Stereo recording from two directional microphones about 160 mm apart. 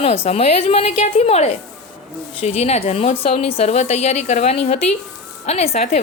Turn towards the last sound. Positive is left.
turn(degrees=40)  # may be behind; listen again after turning